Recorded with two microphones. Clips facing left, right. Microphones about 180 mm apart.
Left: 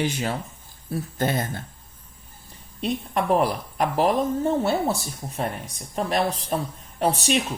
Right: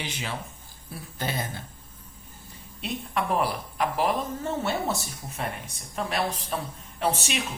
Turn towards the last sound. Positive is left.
turn(degrees=35)  # may be behind; listen again after turning